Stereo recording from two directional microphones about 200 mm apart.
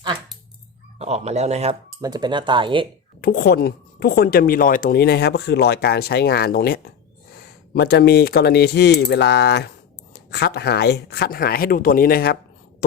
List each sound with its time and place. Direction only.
0.9 s speech: 30° right (ahead or behind)
2.0 s speech: 20° right (ahead or behind)
3.2 s a woman's voice: 45° left (ahead or behind)